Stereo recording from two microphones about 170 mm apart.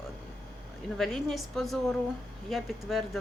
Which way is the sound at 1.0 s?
Centre (ahead or behind).